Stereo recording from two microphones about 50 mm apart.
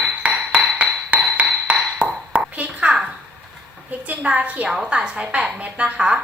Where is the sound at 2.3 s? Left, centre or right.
Right.